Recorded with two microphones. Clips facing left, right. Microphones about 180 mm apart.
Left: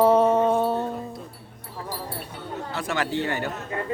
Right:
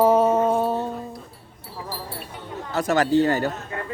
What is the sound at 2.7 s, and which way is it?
Speech, 40° right (ahead or behind).